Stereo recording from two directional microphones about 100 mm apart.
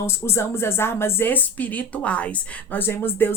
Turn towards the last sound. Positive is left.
turn(degrees=20)  # may be behind; listen again after turning